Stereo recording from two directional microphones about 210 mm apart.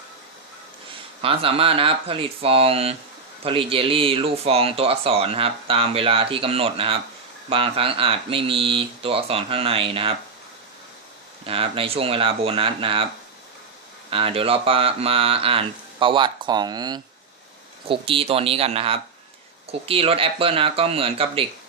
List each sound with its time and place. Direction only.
1.2 s speech: 25° right (ahead or behind)
11.4 s speech: 25° right (ahead or behind)
14.1 s speech: 25° right (ahead or behind)